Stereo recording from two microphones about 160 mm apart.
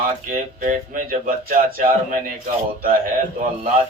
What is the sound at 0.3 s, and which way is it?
A man's voice, 55° right (ahead or behind).